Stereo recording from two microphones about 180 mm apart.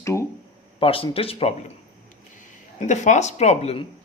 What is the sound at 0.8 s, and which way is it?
Speech, 30° left (ahead or behind).